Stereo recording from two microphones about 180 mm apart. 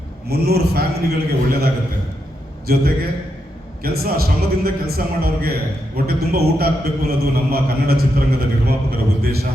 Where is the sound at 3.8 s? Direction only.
55° right (ahead or behind).